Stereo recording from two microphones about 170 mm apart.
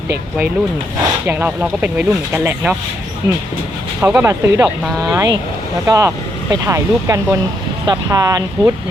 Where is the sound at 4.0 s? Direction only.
10° right (ahead or behind).